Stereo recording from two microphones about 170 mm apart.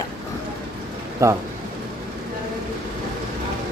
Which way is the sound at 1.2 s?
15° right (ahead or behind).